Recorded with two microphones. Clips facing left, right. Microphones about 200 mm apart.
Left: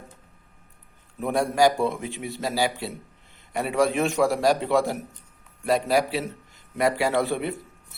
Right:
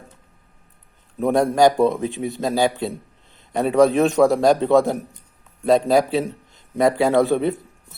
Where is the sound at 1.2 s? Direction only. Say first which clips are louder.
Right 5 dB; 20° right (ahead or behind).